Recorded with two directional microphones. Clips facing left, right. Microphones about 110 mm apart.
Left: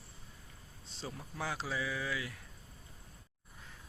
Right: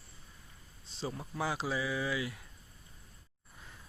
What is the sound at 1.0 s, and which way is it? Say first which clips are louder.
Speech: right 4 dB; 10° right (ahead or behind).